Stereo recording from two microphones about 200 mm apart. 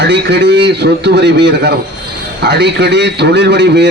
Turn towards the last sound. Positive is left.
turn(degrees=-60)  # may be behind; listen again after turning